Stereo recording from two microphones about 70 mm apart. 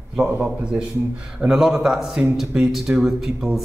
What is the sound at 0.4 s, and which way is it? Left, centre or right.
A woman's voice, centre.